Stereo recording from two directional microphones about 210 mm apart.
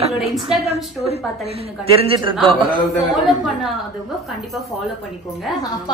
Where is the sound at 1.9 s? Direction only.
25° right (ahead or behind).